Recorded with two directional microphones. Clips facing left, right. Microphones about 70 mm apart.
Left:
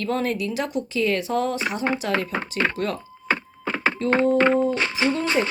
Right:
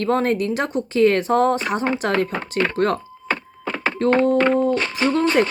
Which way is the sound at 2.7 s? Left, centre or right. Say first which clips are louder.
Right 7 dB; right.